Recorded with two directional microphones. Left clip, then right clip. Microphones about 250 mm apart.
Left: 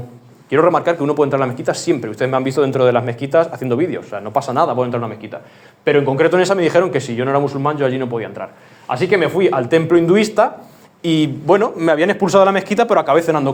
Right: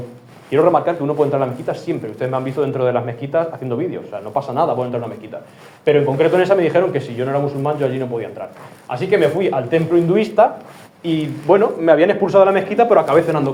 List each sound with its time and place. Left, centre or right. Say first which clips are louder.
0.5 s speech: left 1 dB; left